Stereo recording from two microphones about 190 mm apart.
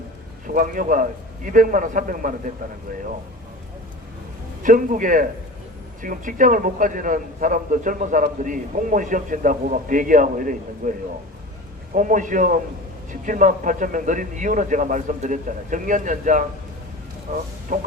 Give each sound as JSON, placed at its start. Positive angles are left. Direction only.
{"t": 0.4, "sound": "a man's voice", "side_deg": -45}
{"t": 4.6, "sound": "a man's voice", "side_deg": -45}
{"t": 11.9, "sound": "a man's voice", "side_deg": -45}